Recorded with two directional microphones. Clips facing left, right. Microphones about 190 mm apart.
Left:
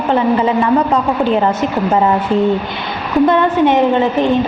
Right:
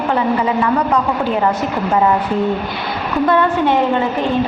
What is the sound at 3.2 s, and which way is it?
Speech, 20° left (ahead or behind).